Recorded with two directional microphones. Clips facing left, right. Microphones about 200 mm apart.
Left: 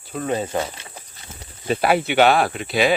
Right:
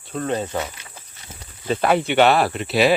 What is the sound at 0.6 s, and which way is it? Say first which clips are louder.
Snake: left 2 dB; 30° left (ahead or behind).